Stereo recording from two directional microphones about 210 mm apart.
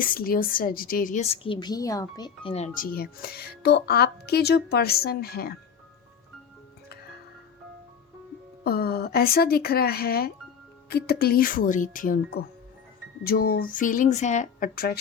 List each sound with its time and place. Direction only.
0.0 s a woman's voice: 45° left (ahead or behind)
8.6 s a woman's voice: 50° left (ahead or behind)